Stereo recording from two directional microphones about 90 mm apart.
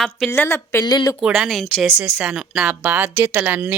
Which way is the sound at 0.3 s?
30° left (ahead or behind).